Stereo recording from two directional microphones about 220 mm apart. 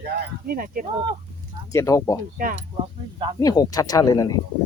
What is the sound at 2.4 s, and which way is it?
Speech, 40° right (ahead or behind).